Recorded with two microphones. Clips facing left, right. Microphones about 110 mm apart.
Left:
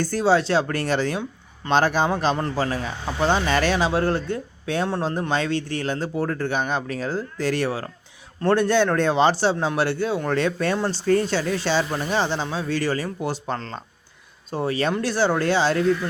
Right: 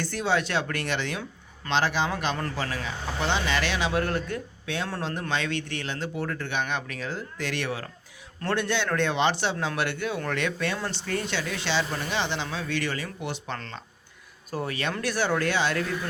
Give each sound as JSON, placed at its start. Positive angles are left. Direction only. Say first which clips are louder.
{"t": 0.0, "sound": "speech", "louder": "left 7 dB", "side_deg": 35}
{"t": 2.0, "sound": "speech", "louder": "left 6 dB", "side_deg": 30}